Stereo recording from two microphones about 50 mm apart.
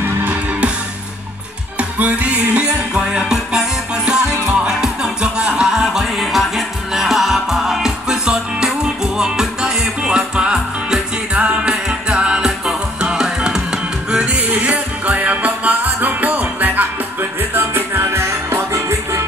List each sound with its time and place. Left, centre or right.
1.8 s music: right
2.6 s music: centre
14.5 s music: right
18.7 s music: right